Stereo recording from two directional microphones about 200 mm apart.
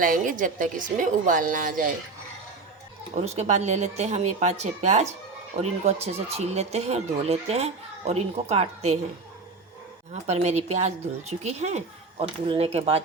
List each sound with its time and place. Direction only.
0.0 s speech: 40° right (ahead or behind)
3.2 s speech: 35° right (ahead or behind)
10.2 s speech: 35° right (ahead or behind)